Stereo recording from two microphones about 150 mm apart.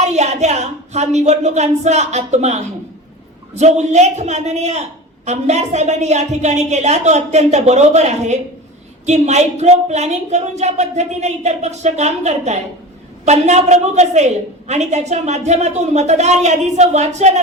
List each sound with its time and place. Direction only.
0.0 s a woman's voice: 50° right (ahead or behind)